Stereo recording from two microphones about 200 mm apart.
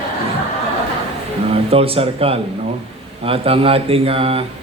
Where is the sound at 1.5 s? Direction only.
30° right (ahead or behind).